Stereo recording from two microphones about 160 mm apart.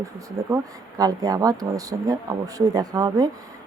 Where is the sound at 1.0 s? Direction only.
25° right (ahead or behind).